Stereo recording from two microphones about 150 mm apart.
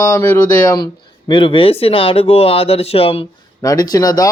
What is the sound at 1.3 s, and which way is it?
Speech, 35° left (ahead or behind).